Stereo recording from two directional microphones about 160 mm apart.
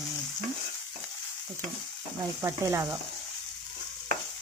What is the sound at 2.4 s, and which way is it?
Speech, 15° right (ahead or behind).